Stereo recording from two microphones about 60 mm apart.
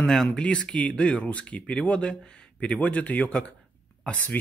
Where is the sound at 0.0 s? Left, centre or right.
Centre.